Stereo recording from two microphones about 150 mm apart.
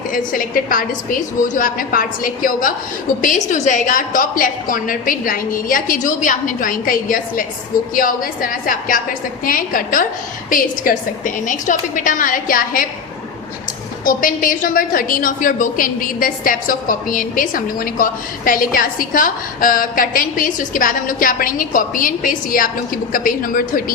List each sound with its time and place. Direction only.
0.1 s a woman's voice: 65° left (ahead or behind)
11.4 s a woman's voice: 60° left (ahead or behind)
14.0 s a woman's voice: 65° left (ahead or behind)